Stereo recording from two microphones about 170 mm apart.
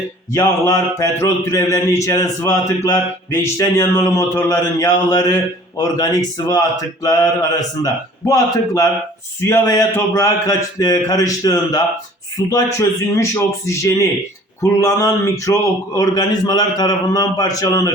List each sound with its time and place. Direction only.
0.3 s mantra: 20° left (ahead or behind)
8.3 s mantra: 20° left (ahead or behind)
12.4 s speech: 20° left (ahead or behind)
14.6 s mantra: 20° left (ahead or behind)